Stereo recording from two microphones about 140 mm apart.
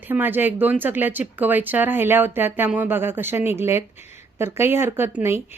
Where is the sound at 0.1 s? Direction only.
15° right (ahead or behind).